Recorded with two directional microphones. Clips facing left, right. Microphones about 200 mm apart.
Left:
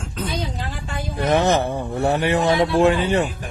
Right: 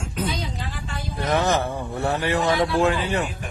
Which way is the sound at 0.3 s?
50° left (ahead or behind).